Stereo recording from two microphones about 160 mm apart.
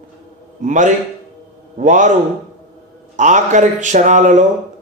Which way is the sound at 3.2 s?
50° right (ahead or behind).